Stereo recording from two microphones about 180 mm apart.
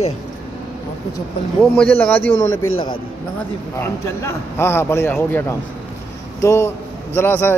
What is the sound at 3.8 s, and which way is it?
Speech, 15° left (ahead or behind).